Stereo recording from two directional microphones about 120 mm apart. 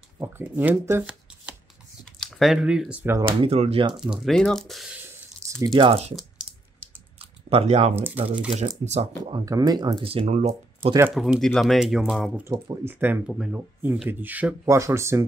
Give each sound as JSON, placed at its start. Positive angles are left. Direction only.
{"t": 0.2, "sound": "speech", "side_deg": -15}
{"t": 2.1, "sound": "speech", "side_deg": 0}
{"t": 3.3, "sound": "speech", "side_deg": -60}
{"t": 4.0, "sound": "speech", "side_deg": -5}
{"t": 5.8, "sound": "speech", "side_deg": -55}
{"t": 7.4, "sound": "speech", "side_deg": -60}
{"t": 7.9, "sound": "speech", "side_deg": -15}
{"t": 8.5, "sound": "speech", "side_deg": -65}
{"t": 9.2, "sound": "speech", "side_deg": -30}
{"t": 10.0, "sound": "speech", "side_deg": -55}
{"t": 11.1, "sound": "speech", "side_deg": 0}
{"t": 12.8, "sound": "speech", "side_deg": -15}